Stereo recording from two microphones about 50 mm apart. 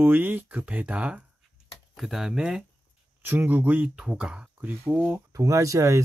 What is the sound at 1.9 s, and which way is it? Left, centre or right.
Speech, centre.